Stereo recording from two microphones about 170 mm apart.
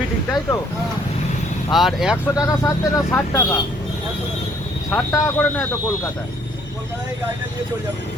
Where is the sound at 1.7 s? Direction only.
Centre (ahead or behind).